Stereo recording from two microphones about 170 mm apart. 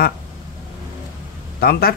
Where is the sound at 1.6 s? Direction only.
65° left (ahead or behind).